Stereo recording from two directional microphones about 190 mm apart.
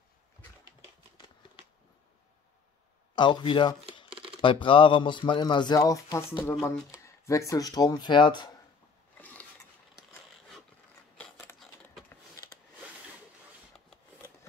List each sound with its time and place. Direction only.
3.2 s a man's voice: 25° left (ahead or behind)
9.2 s mechanisms: 10° left (ahead or behind)
11.1 s keys jangling: 10° left (ahead or behind)